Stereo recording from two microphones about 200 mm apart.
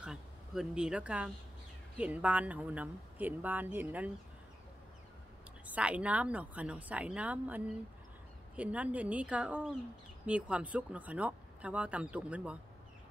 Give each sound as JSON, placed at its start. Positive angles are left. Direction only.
{"t": 0.0, "sound": "speech", "side_deg": -5}
{"t": 5.7, "sound": "speech", "side_deg": -5}